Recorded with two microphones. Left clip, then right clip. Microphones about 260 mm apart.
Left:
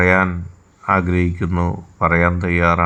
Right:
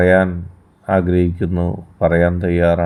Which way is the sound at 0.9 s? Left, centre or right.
Left.